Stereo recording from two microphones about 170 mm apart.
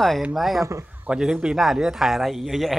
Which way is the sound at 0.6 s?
15° right (ahead or behind).